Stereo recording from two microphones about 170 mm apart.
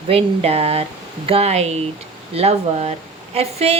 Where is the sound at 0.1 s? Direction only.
35° right (ahead or behind).